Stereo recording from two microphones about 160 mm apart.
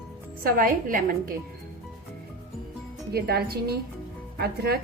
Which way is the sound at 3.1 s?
80° right.